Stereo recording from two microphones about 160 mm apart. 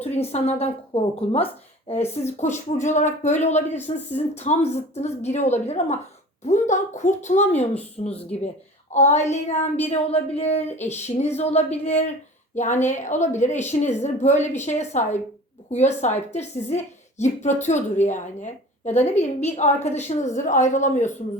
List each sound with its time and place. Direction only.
0.0 s speech: 40° left (ahead or behind)